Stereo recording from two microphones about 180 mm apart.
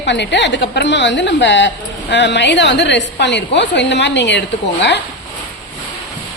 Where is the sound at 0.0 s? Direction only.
80° left.